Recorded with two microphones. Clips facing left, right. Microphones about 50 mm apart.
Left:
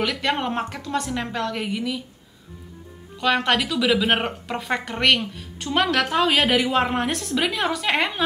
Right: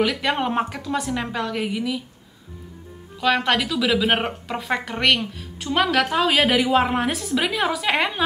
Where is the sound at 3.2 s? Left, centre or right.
Centre.